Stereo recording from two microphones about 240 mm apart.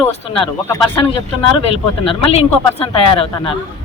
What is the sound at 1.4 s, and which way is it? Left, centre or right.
Speech, left.